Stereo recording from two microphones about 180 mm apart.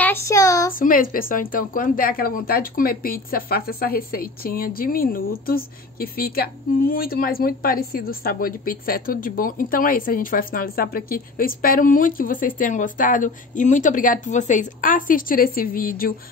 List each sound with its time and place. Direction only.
0.0 s child singing: 15° left (ahead or behind)
0.7 s a woman's voice: 50° left (ahead or behind)